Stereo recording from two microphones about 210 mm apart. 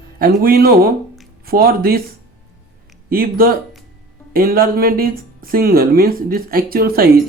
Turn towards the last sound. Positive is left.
turn(degrees=-45)  # may be behind; listen again after turning